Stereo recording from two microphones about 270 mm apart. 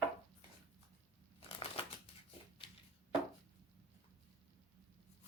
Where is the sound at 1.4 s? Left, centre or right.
Left.